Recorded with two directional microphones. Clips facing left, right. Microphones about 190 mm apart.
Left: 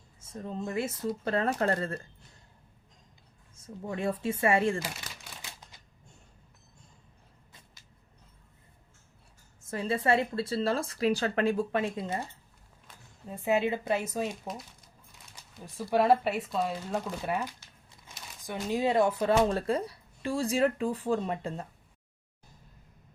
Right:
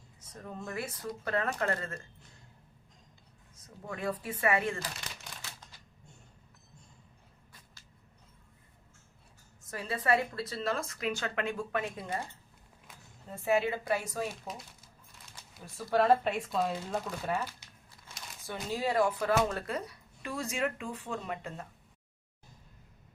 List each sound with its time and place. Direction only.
0.2 s a woman's voice: 25° left (ahead or behind)
3.5 s a woman's voice: 25° left (ahead or behind)
5.4 s typewriter: 15° left (ahead or behind)
9.6 s a woman's voice: 25° left (ahead or behind)
13.2 s a woman's voice: 20° left (ahead or behind)
15.6 s a woman's voice: 15° left (ahead or behind); by 21.7 s 30° left (ahead or behind)